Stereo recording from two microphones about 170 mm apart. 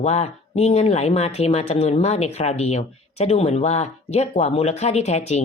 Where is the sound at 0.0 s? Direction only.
40° left (ahead or behind).